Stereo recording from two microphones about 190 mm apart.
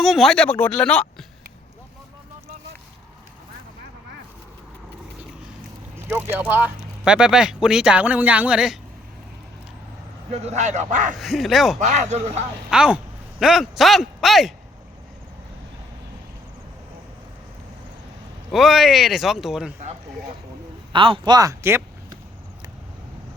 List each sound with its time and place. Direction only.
0.0 s speech: centre (ahead or behind)
6.1 s speech: 10° right (ahead or behind)
10.3 s speech: 35° right (ahead or behind)
11.2 s speech: centre (ahead or behind)
11.8 s speech: 40° right (ahead or behind)
12.7 s speech: 5° right (ahead or behind)
18.5 s speech: centre (ahead or behind)
20.9 s speech: 25° right (ahead or behind)